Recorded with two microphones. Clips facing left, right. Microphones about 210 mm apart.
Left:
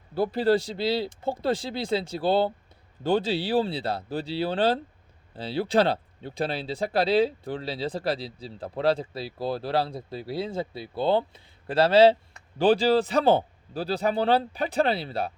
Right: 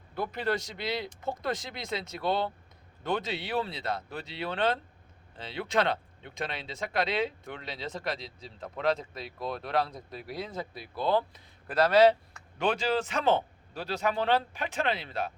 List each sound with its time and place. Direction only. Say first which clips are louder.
0.1 s speech: left 9 dB; 30° left (ahead or behind)